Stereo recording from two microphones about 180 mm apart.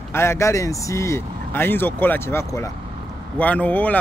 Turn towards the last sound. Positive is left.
turn(degrees=10)  # may be behind; listen again after turning